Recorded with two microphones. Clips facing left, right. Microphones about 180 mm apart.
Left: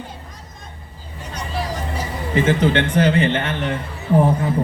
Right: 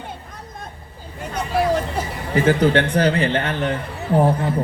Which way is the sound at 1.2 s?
55° right (ahead or behind).